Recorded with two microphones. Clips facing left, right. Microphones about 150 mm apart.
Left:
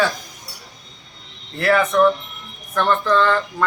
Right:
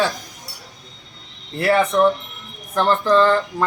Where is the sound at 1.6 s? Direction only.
25° right (ahead or behind).